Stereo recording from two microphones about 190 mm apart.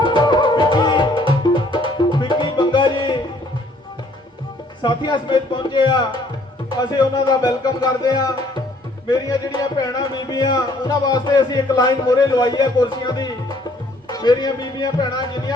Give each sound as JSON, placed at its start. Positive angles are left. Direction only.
{"t": 0.0, "sound": "music", "side_deg": 25}
{"t": 4.8, "sound": "music", "side_deg": 25}